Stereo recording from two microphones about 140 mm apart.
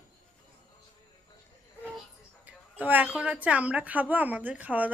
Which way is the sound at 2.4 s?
10° right (ahead or behind).